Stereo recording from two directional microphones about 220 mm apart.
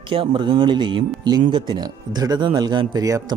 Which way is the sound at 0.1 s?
25° right (ahead or behind).